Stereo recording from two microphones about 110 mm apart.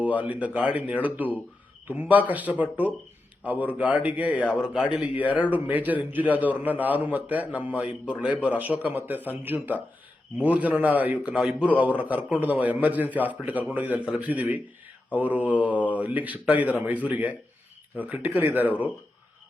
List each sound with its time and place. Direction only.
0.2 s a man's voice: 15° right (ahead or behind)